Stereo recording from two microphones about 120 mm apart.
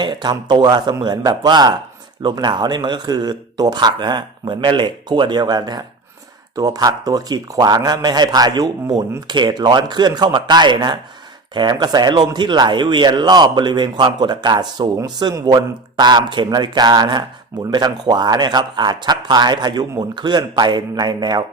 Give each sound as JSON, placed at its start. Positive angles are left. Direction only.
{"t": 0.0, "sound": "speech", "side_deg": -40}